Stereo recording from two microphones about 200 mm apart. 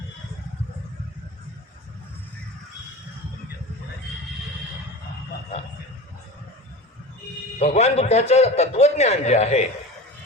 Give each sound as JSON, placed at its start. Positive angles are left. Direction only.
{"t": 7.6, "sound": "a man's voice", "side_deg": 35}